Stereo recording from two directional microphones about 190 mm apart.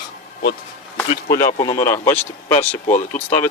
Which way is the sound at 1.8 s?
10° left (ahead or behind).